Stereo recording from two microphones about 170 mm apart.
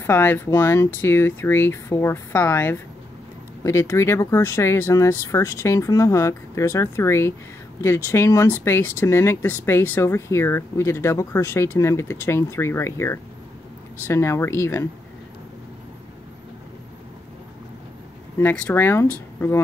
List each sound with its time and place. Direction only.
0.0 s speech: 10° left (ahead or behind)
18.4 s speech: 10° left (ahead or behind)